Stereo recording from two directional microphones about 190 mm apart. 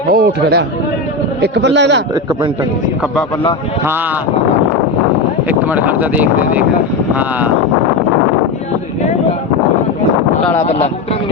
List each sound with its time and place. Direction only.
0.1 s a man's voice: 55° right (ahead or behind)
5.5 s speech: 10° right (ahead or behind)